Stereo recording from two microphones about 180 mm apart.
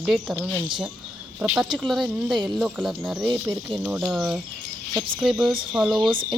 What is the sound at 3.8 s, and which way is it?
Speech, 5° right (ahead or behind).